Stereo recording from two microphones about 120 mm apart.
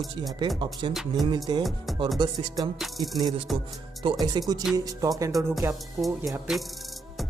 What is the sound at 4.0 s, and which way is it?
Speech, 40° right (ahead or behind).